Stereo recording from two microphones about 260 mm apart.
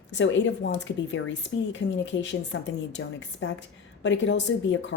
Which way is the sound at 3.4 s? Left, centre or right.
Left.